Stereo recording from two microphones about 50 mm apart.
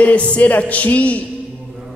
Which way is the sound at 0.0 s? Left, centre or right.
Left.